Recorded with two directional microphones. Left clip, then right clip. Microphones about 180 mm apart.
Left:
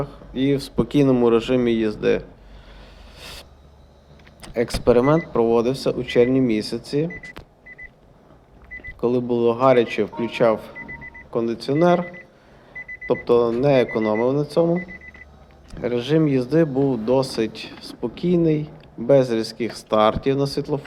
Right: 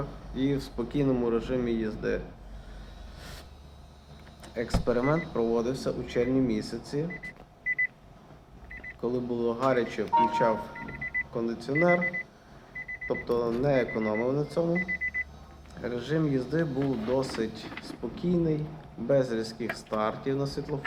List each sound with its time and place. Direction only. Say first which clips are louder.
0.3 s speech: left 9 dB; 25° left (ahead or behind)
3.2 s a sound: left 9 dB; 35° left (ahead or behind)
4.4 s speech: left 9 dB; 30° left (ahead or behind)
9.0 s speech: left 10 dB; 30° left (ahead or behind)
13.1 s speech: left 11 dB; 30° left (ahead or behind)
15.8 s speech: left 10 dB; 30° left (ahead or behind)